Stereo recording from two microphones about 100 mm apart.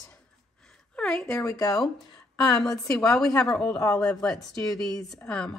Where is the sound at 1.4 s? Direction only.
35° left (ahead or behind).